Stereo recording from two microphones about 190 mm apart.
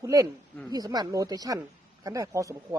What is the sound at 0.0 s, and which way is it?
Speech, 20° right (ahead or behind).